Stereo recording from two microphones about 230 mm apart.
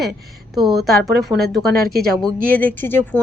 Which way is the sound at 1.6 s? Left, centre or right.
Right.